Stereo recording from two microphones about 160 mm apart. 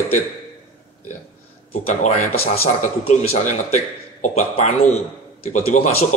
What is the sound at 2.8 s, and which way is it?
Speech, 45° left (ahead or behind).